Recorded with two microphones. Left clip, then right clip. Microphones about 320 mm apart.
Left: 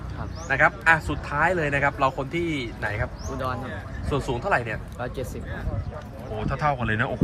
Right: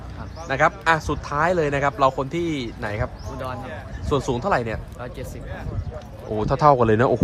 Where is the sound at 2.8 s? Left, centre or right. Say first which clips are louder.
Right 1 dB; centre.